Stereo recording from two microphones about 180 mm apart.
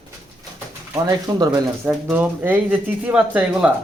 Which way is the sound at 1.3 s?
20° right (ahead or behind).